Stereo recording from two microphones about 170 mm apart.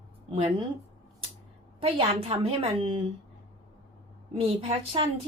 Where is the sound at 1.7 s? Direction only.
35° right (ahead or behind).